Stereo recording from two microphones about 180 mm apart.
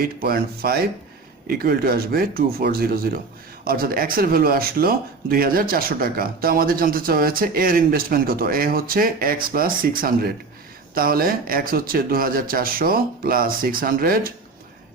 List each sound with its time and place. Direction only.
0.0 s speech: 55° right (ahead or behind)